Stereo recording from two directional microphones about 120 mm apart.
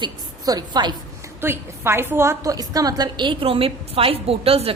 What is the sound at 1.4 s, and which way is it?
A woman's voice, 20° right (ahead or behind).